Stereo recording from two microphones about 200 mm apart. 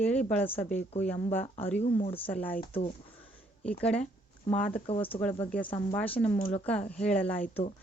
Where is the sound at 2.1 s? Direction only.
10° left (ahead or behind).